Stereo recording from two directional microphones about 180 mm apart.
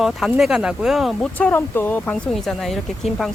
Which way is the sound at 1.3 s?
10° left (ahead or behind).